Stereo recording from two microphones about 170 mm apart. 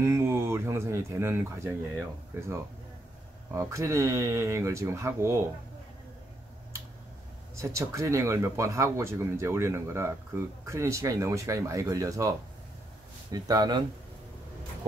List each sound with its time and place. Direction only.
0.0 s speech: 15° right (ahead or behind)
7.6 s speech: 15° right (ahead or behind)